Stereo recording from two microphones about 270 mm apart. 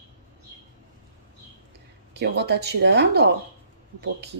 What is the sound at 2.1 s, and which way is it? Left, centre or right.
Speech, right.